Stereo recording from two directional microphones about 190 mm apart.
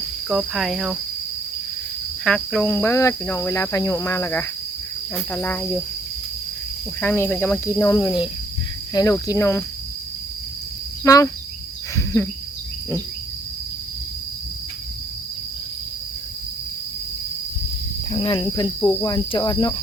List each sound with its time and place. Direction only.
0.3 s speech: centre (ahead or behind)
2.2 s cricket: 5° left (ahead or behind)
7.0 s cricket: 10° left (ahead or behind)
11.0 s speech: 15° left (ahead or behind)
11.9 s a sound: 15° left (ahead or behind)
18.1 s cricket: 25° left (ahead or behind)
18.8 s cricket: 15° left (ahead or behind)